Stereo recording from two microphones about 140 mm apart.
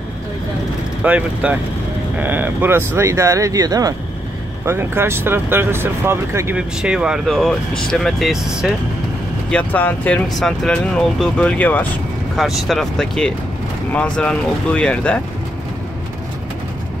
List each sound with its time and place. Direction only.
1.0 s speech: 10° right (ahead or behind)
6.5 s speech: 5° right (ahead or behind)
9.5 s speech: 10° left (ahead or behind)
12.4 s speech: centre (ahead or behind)